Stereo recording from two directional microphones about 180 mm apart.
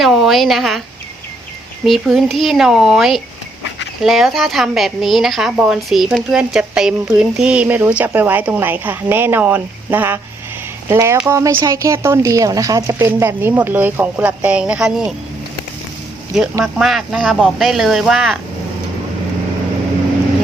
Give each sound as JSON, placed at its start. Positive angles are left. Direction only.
{"t": 0.0, "sound": "a sound", "side_deg": 0}
{"t": 1.8, "sound": "speech", "side_deg": 0}
{"t": 16.7, "sound": "speech", "side_deg": 0}